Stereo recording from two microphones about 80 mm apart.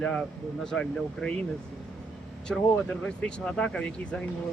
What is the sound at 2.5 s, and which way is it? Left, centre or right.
Speech, centre.